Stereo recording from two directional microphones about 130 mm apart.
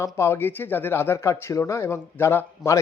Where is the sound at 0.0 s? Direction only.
20° left (ahead or behind).